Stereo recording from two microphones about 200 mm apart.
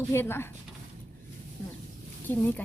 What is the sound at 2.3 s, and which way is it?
Speech, 10° left (ahead or behind).